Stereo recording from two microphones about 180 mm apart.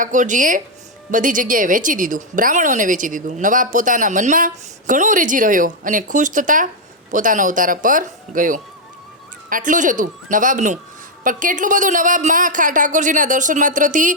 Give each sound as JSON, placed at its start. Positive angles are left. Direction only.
{"t": 0.0, "sound": "speech", "side_deg": -45}